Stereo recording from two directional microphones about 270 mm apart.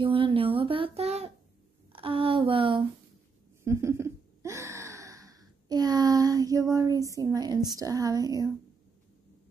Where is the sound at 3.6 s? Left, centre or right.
Centre.